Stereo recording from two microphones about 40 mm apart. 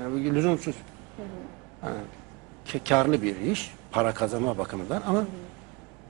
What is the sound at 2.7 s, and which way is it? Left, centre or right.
A man's voice, centre.